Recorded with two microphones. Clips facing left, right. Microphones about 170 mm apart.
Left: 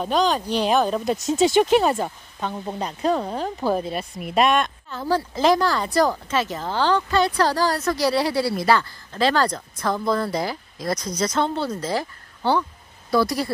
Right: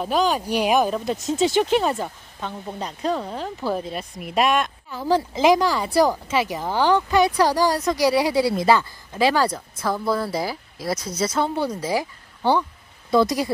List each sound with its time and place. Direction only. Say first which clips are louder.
0.0 s speech: even; 5° right (ahead or behind)
1.3 s speech: left 2 dB; 10° left (ahead or behind)
1.8 s speech: left 2 dB; 45° left (ahead or behind)
3.9 s speech: left 2 dB; centre (ahead or behind)
5.0 s speech: right 2 dB; 15° right (ahead or behind)